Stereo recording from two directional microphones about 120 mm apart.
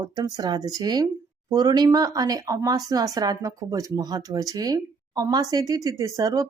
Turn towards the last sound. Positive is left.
turn(degrees=-30)  # may be behind; listen again after turning